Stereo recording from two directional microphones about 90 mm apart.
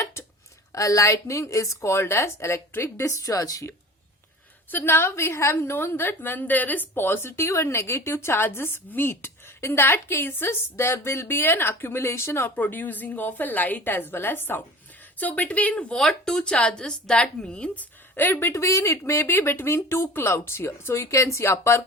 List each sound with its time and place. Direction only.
0.0 s a sound: 30° left (ahead or behind)
0.7 s a woman's voice: 35° left (ahead or behind)
4.7 s a woman's voice: 25° left (ahead or behind)